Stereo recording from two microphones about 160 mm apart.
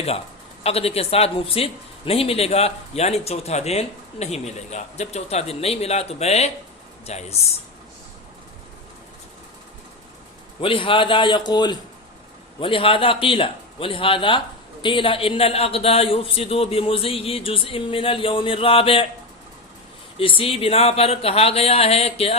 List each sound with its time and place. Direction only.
0.6 s a man's voice: 40° left (ahead or behind)
10.6 s a man's voice: 35° left (ahead or behind)
20.1 s a man's voice: 35° left (ahead or behind)